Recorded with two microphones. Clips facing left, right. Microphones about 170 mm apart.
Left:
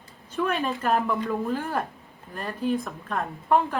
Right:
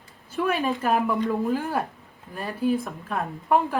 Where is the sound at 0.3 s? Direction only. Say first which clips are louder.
Right 2 dB; 5° right (ahead or behind).